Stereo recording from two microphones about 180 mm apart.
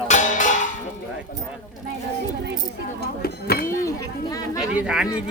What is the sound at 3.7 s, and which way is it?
Speech, 20° left (ahead or behind).